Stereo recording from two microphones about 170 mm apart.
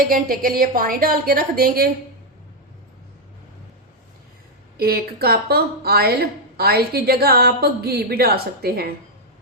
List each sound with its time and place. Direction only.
0.0 s a woman's voice: 60° right (ahead or behind)
4.8 s a woman's voice: 65° right (ahead or behind)